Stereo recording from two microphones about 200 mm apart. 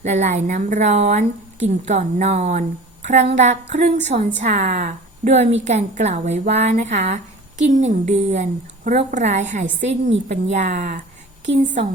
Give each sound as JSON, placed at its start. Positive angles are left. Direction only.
{"t": 0.0, "sound": "a woman's voice", "side_deg": -35}
{"t": 9.8, "sound": "a woman's voice", "side_deg": -65}
{"t": 10.5, "sound": "a woman's voice", "side_deg": -35}